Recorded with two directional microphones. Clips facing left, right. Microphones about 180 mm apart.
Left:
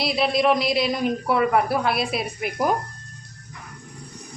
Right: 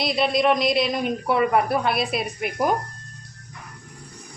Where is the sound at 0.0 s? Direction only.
Centre (ahead or behind).